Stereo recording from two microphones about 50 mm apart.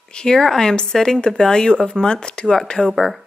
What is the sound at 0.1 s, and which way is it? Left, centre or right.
Speech, centre.